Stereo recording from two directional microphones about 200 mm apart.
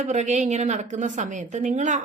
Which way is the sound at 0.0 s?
35° right (ahead or behind).